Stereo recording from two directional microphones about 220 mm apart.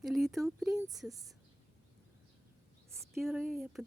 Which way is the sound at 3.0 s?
Centre (ahead or behind).